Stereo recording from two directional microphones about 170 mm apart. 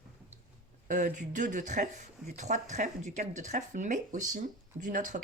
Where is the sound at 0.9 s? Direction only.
45° right (ahead or behind).